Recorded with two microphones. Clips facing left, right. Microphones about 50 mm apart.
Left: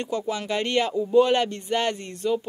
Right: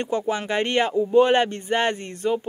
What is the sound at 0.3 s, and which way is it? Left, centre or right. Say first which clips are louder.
Speech: right 1 dB; right.